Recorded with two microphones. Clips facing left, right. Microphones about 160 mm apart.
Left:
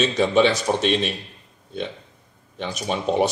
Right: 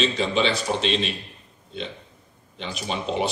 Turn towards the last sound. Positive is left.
turn(degrees=45)  # may be behind; listen again after turning